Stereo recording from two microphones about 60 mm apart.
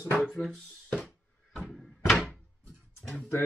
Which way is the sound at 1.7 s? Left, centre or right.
Centre.